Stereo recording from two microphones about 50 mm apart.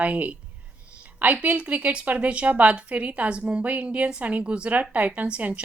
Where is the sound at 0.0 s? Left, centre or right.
Right.